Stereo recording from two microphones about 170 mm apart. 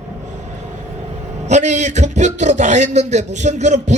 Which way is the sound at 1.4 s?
45° right (ahead or behind).